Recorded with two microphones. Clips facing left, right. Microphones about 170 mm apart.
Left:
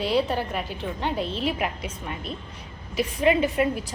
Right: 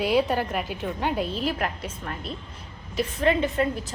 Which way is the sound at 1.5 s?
5° left (ahead or behind).